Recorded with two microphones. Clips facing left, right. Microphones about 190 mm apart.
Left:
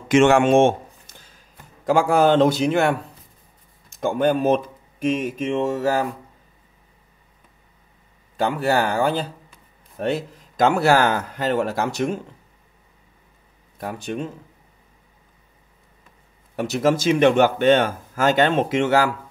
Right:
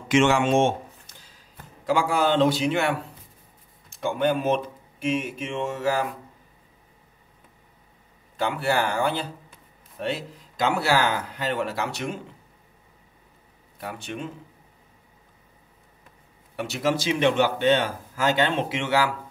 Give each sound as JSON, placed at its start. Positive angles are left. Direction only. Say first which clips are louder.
{"t": 0.1, "sound": "a man's voice", "louder": "left 5 dB", "side_deg": 50}
{"t": 4.0, "sound": "a man's voice", "louder": "left 4 dB", "side_deg": 45}
{"t": 5.2, "sound": "a sound", "louder": "left 7 dB", "side_deg": 40}
{"t": 8.4, "sound": "a man's voice", "louder": "left 4 dB", "side_deg": 45}
{"t": 13.7, "sound": "a sound", "louder": "left 6 dB", "side_deg": 40}
{"t": 16.5, "sound": "a man's voice", "louder": "left 5 dB", "side_deg": 40}